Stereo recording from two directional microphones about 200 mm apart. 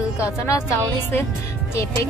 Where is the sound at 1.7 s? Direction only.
15° left (ahead or behind).